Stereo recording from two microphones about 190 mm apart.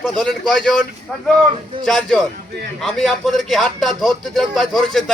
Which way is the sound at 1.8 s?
Centre (ahead or behind).